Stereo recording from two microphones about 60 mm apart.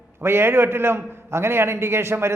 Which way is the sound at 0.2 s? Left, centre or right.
Right.